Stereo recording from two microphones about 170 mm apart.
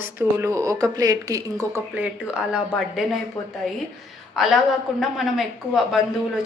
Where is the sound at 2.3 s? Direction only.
5° right (ahead or behind).